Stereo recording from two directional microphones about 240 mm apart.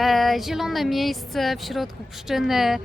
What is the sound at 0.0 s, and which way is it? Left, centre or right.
Speech, centre.